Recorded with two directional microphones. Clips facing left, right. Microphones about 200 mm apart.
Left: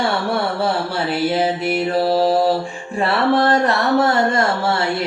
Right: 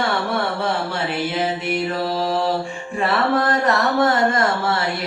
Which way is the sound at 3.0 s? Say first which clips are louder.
Left 3 dB; 30° left (ahead or behind).